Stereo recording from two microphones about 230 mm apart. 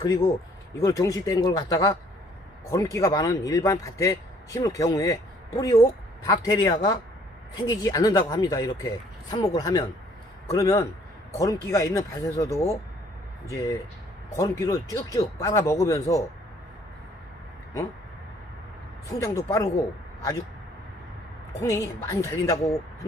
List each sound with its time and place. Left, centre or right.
0.0 s speech: centre
19.0 s speech: centre
21.6 s speech: centre